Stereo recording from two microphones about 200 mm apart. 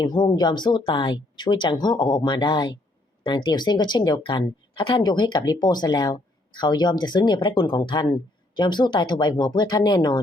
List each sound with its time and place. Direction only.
0.0 s speech: 20° left (ahead or behind)